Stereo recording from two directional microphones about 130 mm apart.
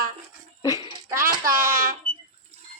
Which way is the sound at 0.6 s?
30° left (ahead or behind).